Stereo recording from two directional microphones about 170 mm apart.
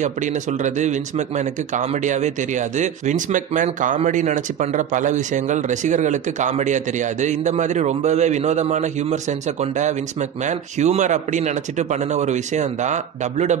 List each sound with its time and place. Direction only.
0.0 s speech: 45° right (ahead or behind)